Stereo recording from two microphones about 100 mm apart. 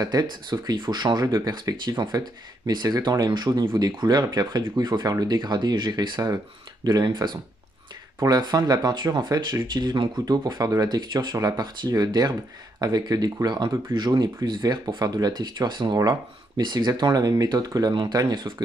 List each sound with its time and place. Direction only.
0.0 s speech: 45° right (ahead or behind)
8.4 s speech: 45° right (ahead or behind)
10.4 s speech: 35° right (ahead or behind)